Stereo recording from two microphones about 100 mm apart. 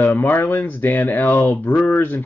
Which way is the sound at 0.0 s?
20° left (ahead or behind).